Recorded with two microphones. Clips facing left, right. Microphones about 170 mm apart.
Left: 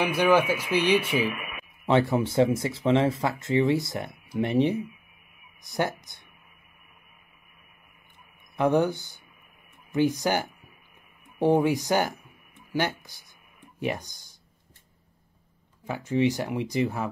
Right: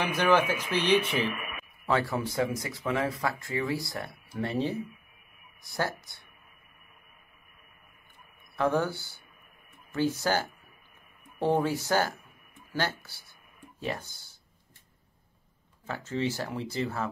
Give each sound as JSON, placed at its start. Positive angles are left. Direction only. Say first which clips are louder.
{"t": 0.0, "sound": "speech", "louder": "left 3 dB", "side_deg": 10}
{"t": 1.9, "sound": "speech", "louder": "left 6 dB", "side_deg": 20}
{"t": 8.5, "sound": "speech", "louder": "left 5 dB", "side_deg": 15}
{"t": 15.8, "sound": "speech", "louder": "left 7 dB", "side_deg": 15}